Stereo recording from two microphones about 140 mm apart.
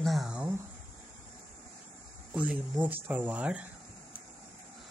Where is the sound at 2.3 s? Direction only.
10° right (ahead or behind).